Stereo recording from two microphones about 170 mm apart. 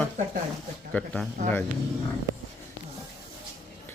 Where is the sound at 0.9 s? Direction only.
5° left (ahead or behind).